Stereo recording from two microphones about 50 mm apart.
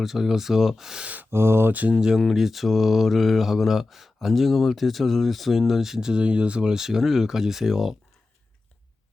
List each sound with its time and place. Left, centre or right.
0.0 s speech: centre
1.0 s speech: right
1.3 s speech: right
1.9 s speech: centre
2.2 s mantra: centre